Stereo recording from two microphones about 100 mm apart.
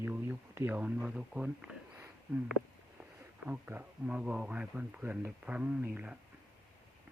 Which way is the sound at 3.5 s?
20° right (ahead or behind).